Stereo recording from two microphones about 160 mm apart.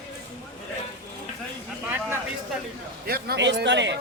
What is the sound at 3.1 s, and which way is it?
Speech, 85° right.